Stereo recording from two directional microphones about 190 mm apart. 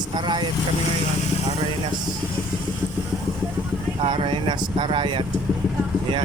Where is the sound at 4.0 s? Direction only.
30° right (ahead or behind).